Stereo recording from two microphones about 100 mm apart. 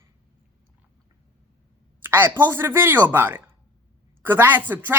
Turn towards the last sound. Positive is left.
turn(degrees=-20)  # may be behind; listen again after turning